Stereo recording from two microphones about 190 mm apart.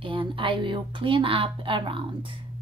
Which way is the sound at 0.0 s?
25° right (ahead or behind).